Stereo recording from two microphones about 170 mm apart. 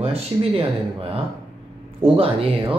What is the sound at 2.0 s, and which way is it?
Speech, 35° right (ahead or behind).